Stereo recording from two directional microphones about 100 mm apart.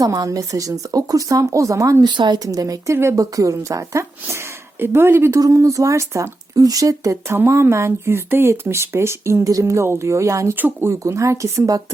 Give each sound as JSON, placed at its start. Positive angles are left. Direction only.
{"t": 0.0, "sound": "speech", "side_deg": -35}
{"t": 5.4, "sound": "speech", "side_deg": -35}